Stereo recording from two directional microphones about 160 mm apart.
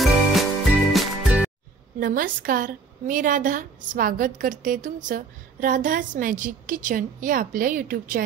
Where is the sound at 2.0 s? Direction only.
60° right (ahead or behind).